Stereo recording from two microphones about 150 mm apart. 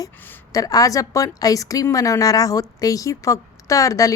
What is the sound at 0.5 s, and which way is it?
A woman's voice, 25° left (ahead or behind).